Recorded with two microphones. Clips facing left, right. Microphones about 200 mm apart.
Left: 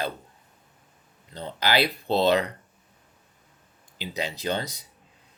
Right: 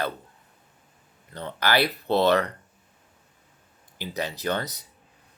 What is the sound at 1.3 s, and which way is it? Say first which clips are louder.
Speech: right 1 dB; 15° left (ahead or behind).